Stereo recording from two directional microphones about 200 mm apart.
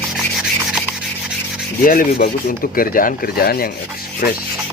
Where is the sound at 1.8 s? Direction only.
45° left (ahead or behind).